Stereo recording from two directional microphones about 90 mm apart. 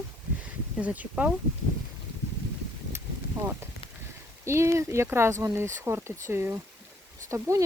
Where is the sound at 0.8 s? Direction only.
15° right (ahead or behind).